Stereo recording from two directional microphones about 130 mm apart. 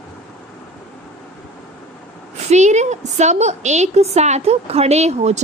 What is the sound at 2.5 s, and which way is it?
A woman's voice, 60° right (ahead or behind).